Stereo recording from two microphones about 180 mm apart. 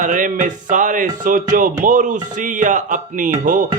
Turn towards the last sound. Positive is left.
turn(degrees=-45)  # may be behind; listen again after turning